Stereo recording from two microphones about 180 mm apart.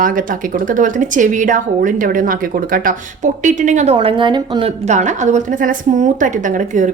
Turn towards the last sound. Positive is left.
turn(degrees=-45)  # may be behind; listen again after turning